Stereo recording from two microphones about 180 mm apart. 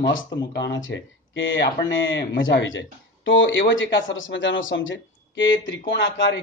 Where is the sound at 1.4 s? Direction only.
85° left.